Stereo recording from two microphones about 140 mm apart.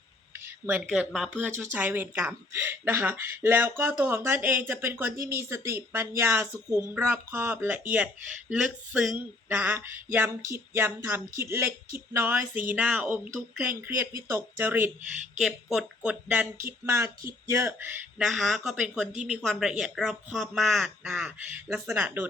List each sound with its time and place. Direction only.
0.9 s speech: 5° right (ahead or behind)
1.7 s speech: 15° right (ahead or behind)
15.4 s speech: 5° right (ahead or behind)
18.2 s speech: 5° right (ahead or behind)